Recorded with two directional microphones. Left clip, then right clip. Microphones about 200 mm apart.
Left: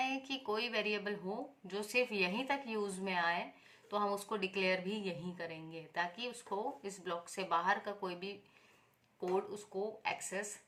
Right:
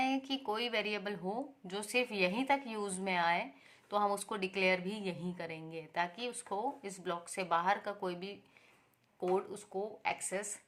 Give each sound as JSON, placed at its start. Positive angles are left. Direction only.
{"t": 0.0, "sound": "a woman's voice", "side_deg": -35}